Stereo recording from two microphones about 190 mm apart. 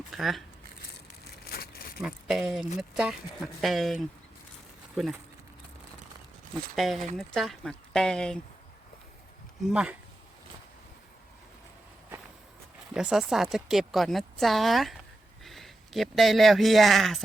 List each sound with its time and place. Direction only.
0.1 s speech: centre (ahead or behind)
1.2 s crushing: 55° left (ahead or behind)
2.0 s speech: 5° right (ahead or behind)
6.7 s speech: centre (ahead or behind)
9.6 s speech: 5° right (ahead or behind)
12.9 s speech: 5° right (ahead or behind)